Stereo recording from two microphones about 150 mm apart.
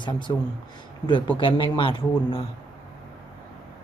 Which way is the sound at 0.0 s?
30° left (ahead or behind).